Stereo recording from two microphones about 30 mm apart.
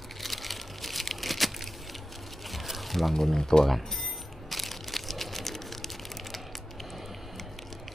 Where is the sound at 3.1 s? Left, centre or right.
Centre.